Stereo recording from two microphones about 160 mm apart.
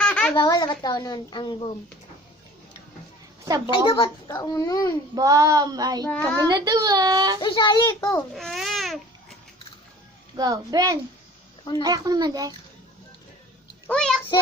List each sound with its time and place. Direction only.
0.0 s a sound: 10° left (ahead or behind)
0.3 s a woman's voice: 25° left (ahead or behind)
3.8 s a woman's voice: 30° left (ahead or behind)
5.1 s child singing: 20° right (ahead or behind)
6.1 s a child's voice: 10° left (ahead or behind)
6.5 s child singing: 25° right (ahead or behind)
7.4 s speech: 30° left (ahead or behind)
7.8 s a woman's voice: 20° left (ahead or behind)
8.4 s babbling: centre (ahead or behind)
10.3 s child singing: 25° right (ahead or behind)
13.8 s a child's voice: 5° left (ahead or behind)